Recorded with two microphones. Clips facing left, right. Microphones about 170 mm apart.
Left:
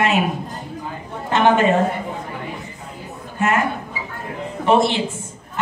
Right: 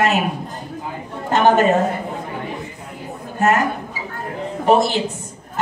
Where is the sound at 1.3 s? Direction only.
40° right (ahead or behind).